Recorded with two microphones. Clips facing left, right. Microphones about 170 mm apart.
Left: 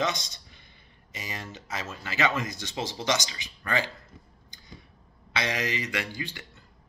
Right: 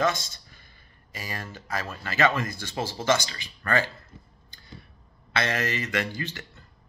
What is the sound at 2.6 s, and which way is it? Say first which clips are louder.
Speech: right 2 dB; 50° right (ahead or behind).